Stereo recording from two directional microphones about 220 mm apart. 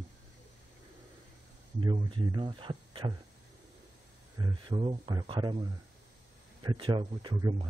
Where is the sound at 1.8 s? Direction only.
20° right (ahead or behind).